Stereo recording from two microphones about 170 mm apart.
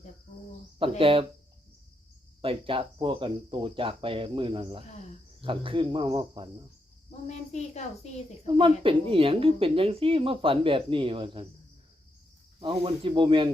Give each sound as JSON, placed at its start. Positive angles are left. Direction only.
{"t": 0.8, "sound": "a woman's voice", "side_deg": -30}
{"t": 2.4, "sound": "a woman's voice", "side_deg": -35}
{"t": 7.1, "sound": "a woman's voice", "side_deg": 40}
{"t": 8.4, "sound": "a woman's voice", "side_deg": -30}
{"t": 12.5, "sound": "speech", "side_deg": -30}